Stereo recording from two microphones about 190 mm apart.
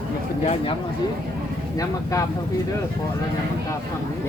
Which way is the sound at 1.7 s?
20° left (ahead or behind).